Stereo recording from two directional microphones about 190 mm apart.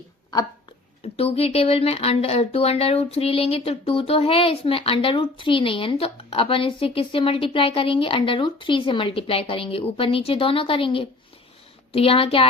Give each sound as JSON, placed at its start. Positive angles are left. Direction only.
{"t": 1.0, "sound": "a woman's voice", "side_deg": 30}